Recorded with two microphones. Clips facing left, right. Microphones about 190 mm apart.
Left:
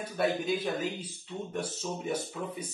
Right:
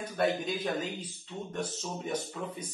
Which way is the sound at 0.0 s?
10° left (ahead or behind).